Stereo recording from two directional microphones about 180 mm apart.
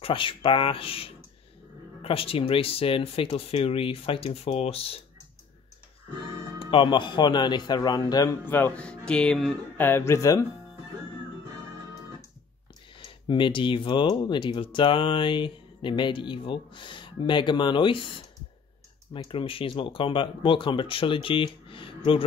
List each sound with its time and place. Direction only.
0.0 s speech: 30° left (ahead or behind)
6.6 s speech: 30° left (ahead or behind); by 9.8 s centre (ahead or behind)
9.8 s speech: 15° left (ahead or behind)
13.3 s speech: 25° left (ahead or behind)